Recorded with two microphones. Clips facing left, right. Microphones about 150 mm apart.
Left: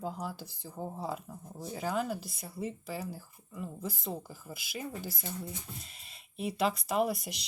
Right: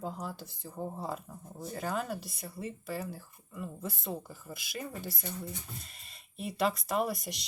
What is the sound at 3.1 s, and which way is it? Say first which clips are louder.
Speech: left 1 dB; 60° right (ahead or behind).